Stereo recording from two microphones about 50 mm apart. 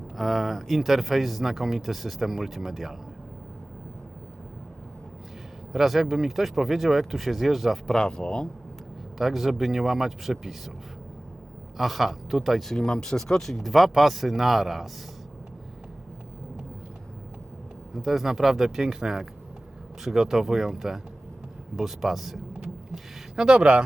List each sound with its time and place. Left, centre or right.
0.2 s speech: centre
5.7 s speech: centre
7.9 s speech: centre
9.1 s speech: centre
11.8 s speech: centre
12.7 s speech: centre
17.9 s speech: centre
22.5 s vehicle: centre